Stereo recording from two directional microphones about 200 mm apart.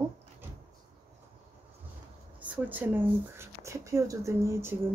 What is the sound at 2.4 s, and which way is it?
Speech, 10° right (ahead or behind).